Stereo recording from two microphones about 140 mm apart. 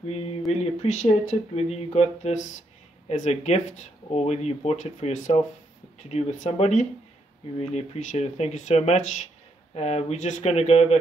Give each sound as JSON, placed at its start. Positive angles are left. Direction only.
{"t": 0.5, "sound": "speech", "side_deg": 55}